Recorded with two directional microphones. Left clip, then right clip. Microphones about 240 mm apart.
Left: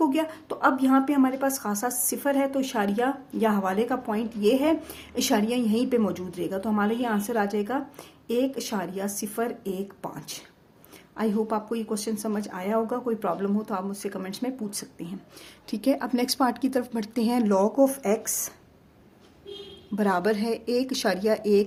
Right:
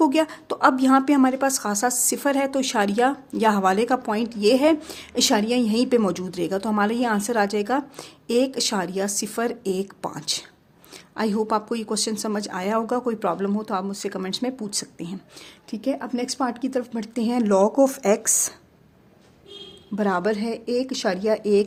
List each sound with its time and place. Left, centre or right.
0.0 s a woman's voice: right
15.7 s speech: centre; by 18.5 s right
20.0 s speech: centre